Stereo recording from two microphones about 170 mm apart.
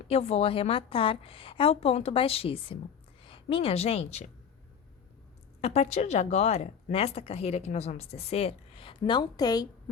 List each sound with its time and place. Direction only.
0.1 s a woman's voice: 35° left (ahead or behind)
5.5 s speech: 40° left (ahead or behind); by 9.6 s 25° left (ahead or behind)